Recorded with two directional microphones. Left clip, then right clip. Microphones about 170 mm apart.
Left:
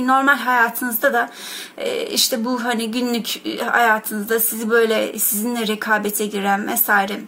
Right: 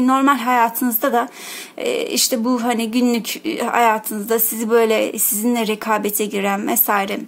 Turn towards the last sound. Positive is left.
turn(degrees=-40)  # may be behind; listen again after turning